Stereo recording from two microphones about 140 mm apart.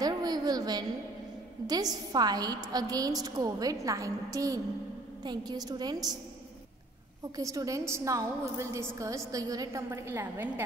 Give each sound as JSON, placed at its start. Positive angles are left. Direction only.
{"t": 0.0, "sound": "a sound", "side_deg": -30}
{"t": 1.7, "sound": "a woman's voice", "side_deg": -25}
{"t": 7.3, "sound": "a woman's voice", "side_deg": -25}